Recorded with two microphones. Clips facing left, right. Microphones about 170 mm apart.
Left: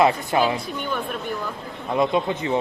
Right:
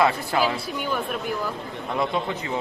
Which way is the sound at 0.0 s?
20° left (ahead or behind).